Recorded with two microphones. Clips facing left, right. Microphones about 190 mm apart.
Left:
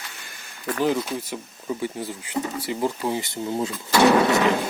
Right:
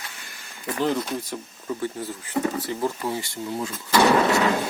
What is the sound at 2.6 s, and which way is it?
Speech, 15° left (ahead or behind).